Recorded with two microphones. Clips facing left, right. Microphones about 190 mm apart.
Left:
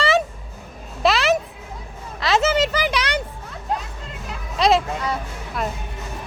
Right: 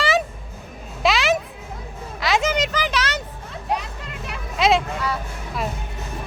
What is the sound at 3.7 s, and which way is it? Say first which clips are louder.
Music: right 1 dB; 80° right.